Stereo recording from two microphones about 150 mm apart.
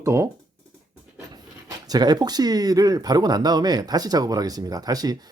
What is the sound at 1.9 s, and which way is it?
Speech, 25° right (ahead or behind).